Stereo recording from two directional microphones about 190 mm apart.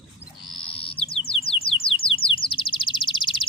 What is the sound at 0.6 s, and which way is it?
Bird, 30° left (ahead or behind).